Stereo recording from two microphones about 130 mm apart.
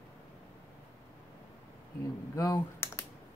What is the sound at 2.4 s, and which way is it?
Typing, 25° left (ahead or behind).